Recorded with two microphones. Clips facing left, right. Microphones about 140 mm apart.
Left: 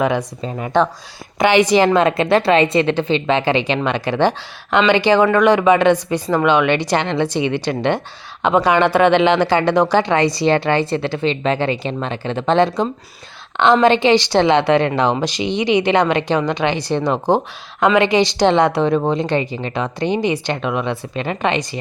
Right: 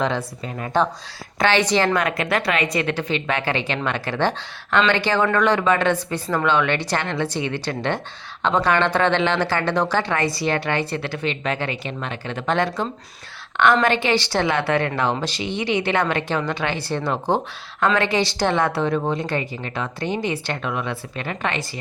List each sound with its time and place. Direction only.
0.0 s a woman's voice: 15° left (ahead or behind)
1.4 s a woman's voice: 15° left (ahead or behind)